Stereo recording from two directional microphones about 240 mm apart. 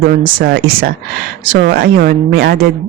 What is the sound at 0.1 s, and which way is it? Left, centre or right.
Speech, right.